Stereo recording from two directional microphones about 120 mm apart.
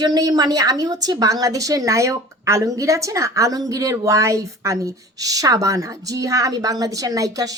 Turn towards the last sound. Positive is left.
turn(degrees=-30)  # may be behind; listen again after turning